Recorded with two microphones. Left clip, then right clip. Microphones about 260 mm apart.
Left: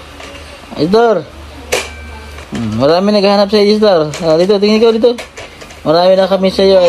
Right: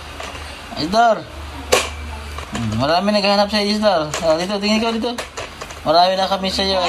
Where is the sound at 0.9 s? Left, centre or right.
Left.